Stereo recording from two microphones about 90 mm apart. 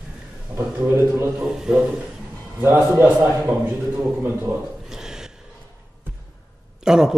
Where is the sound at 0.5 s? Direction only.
15° right (ahead or behind).